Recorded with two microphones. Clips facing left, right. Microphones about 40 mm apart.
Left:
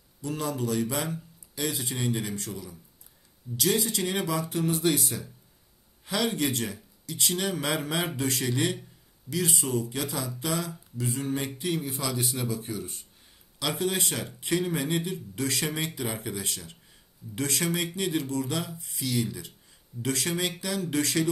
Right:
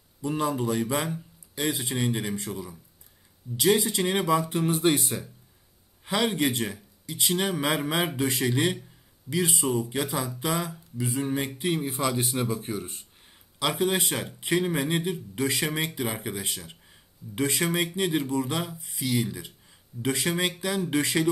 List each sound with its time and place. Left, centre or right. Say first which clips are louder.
0.2 s speech: right 4 dB; right
13.6 s speech: right 3 dB; right